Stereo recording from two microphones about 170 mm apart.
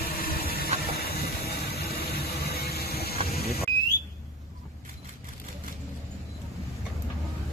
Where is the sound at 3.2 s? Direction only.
65° left (ahead or behind).